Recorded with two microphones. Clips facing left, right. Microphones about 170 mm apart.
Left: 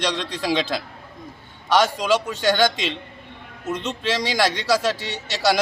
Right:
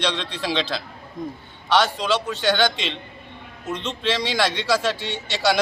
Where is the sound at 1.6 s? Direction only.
5° left (ahead or behind).